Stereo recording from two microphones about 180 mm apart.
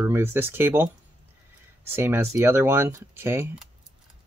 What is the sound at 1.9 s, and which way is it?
Speech, 15° right (ahead or behind).